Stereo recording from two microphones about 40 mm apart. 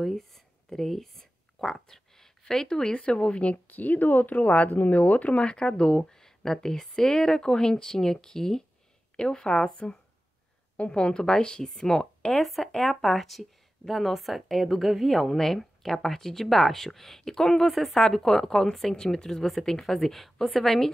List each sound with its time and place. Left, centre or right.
0.0 s speech: centre; by 3.5 s left
3.5 s a woman's voice: left; by 9.7 s centre
10.9 s a woman's voice: left
12.3 s speech: centre
17.6 s speech: centre